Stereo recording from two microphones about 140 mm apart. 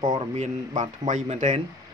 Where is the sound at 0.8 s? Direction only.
60° right (ahead or behind).